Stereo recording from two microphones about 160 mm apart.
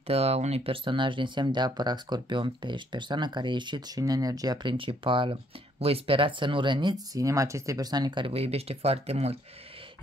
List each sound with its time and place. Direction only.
0.0 s speech: 40° right (ahead or behind)